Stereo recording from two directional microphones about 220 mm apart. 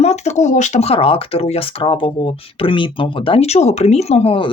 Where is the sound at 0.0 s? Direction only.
30° left (ahead or behind).